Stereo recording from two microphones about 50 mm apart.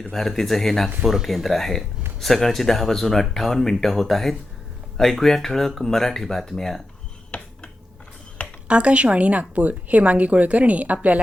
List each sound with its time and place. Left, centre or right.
0.0 s speech: centre
1.0 s speech: centre
7.3 s a sound: left
8.6 s a woman's voice: right